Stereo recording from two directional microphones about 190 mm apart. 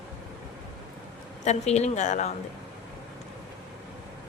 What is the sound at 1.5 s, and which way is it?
Speech, 35° left (ahead or behind).